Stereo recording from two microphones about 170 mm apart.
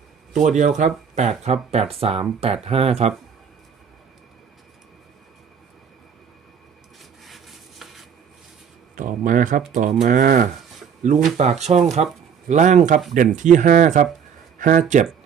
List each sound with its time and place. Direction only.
0.4 s speech: 45° right (ahead or behind)
7.3 s a sound: centre (ahead or behind)
9.0 s speech: 50° right (ahead or behind)